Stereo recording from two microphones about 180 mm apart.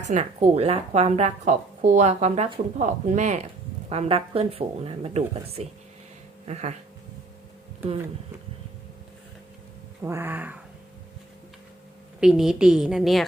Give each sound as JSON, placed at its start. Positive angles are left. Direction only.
{"t": 0.1, "sound": "speech", "side_deg": -40}
{"t": 10.0, "sound": "speech", "side_deg": -15}
{"t": 12.2, "sound": "a woman's voice", "side_deg": -5}